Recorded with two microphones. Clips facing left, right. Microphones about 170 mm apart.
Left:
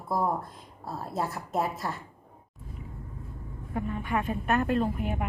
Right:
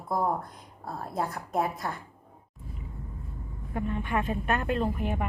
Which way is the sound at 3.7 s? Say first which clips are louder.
Even; centre (ahead or behind).